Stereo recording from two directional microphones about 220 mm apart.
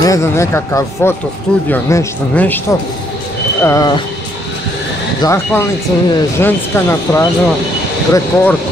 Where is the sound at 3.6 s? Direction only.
15° left (ahead or behind).